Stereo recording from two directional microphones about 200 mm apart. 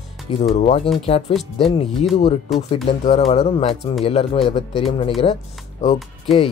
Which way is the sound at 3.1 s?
30° left (ahead or behind).